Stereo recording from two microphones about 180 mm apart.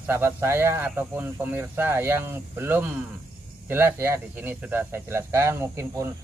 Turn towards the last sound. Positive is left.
turn(degrees=-15)  # may be behind; listen again after turning